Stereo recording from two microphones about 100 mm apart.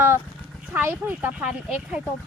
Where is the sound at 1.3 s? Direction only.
10° right (ahead or behind).